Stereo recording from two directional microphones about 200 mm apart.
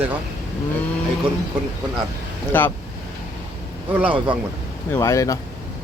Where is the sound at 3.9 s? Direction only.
5° right (ahead or behind).